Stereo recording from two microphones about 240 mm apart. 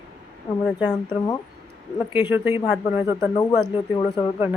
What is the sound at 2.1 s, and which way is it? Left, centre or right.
Speech, centre.